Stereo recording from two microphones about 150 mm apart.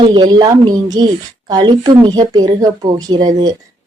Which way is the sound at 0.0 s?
30° right (ahead or behind).